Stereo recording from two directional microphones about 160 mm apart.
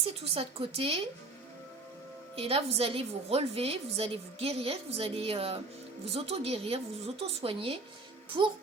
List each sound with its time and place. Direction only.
0.0 s a woman's voice: 35° right (ahead or behind)
2.3 s a woman's voice: 35° right (ahead or behind)